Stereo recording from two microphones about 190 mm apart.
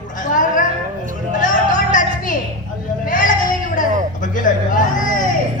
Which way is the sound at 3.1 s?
45° left (ahead or behind).